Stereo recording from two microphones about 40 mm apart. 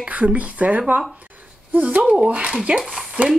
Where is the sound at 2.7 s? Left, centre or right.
Right.